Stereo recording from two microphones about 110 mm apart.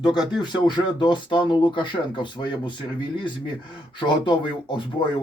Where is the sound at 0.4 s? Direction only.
45° left (ahead or behind).